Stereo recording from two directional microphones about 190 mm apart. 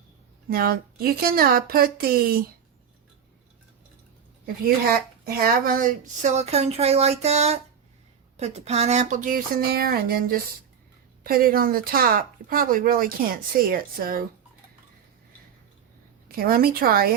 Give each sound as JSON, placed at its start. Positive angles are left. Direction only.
{"t": 0.5, "sound": "speech", "side_deg": -50}
{"t": 5.2, "sound": "speech", "side_deg": -50}
{"t": 16.3, "sound": "speech", "side_deg": -50}